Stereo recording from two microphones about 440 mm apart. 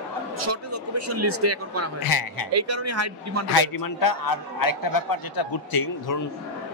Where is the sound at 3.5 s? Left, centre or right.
Left.